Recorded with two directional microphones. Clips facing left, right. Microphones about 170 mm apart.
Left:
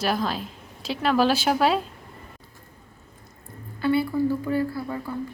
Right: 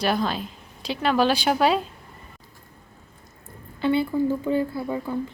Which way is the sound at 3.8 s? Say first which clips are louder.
Right 1 dB; 20° right (ahead or behind).